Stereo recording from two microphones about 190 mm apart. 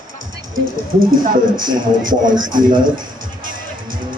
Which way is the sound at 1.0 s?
45° right (ahead or behind).